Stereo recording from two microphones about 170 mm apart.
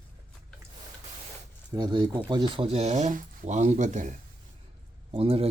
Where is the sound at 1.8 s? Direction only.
25° right (ahead or behind); by 4.1 s 45° right (ahead or behind).